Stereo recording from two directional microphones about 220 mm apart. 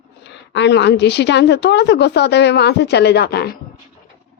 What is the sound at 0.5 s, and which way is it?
A woman's voice, 50° left (ahead or behind).